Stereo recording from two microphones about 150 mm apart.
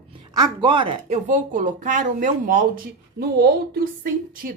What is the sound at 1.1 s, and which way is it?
Speech, 55° right (ahead or behind).